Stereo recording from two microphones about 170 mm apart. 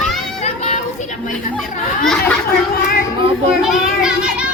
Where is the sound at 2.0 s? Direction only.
5° left (ahead or behind).